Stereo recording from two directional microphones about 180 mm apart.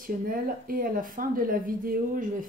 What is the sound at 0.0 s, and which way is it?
A woman's voice, 50° right (ahead or behind).